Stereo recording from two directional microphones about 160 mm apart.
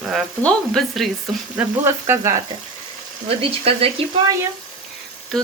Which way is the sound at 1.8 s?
15° right (ahead or behind).